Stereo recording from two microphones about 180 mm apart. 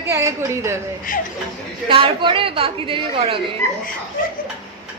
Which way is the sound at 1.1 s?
50° left (ahead or behind).